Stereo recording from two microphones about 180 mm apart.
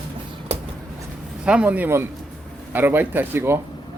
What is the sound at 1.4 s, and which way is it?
Speech, 5° right (ahead or behind).